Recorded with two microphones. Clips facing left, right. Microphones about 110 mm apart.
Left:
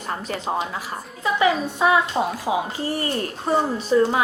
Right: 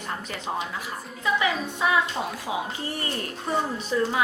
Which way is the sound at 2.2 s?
35° left (ahead or behind).